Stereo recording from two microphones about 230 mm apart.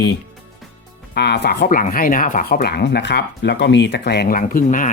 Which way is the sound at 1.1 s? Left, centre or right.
Left.